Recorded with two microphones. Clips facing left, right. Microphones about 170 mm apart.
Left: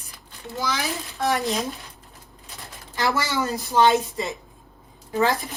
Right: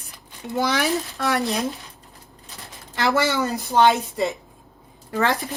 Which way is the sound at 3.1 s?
65° right (ahead or behind).